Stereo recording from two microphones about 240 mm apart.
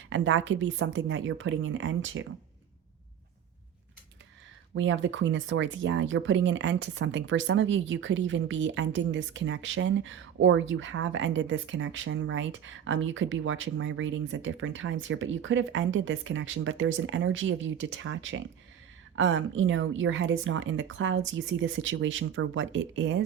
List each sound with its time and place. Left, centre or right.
0.1 s speech: right
4.7 s speech: right